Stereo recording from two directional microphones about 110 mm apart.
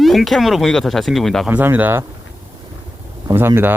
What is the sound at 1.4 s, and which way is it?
Speech, 15° right (ahead or behind).